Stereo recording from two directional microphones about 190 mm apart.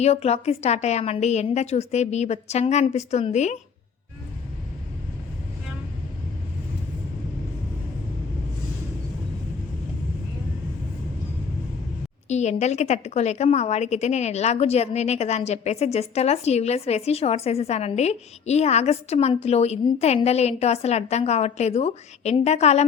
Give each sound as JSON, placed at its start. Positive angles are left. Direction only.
{"t": 0.0, "sound": "a woman's voice", "side_deg": 35}
{"t": 12.3, "sound": "a woman's voice", "side_deg": 35}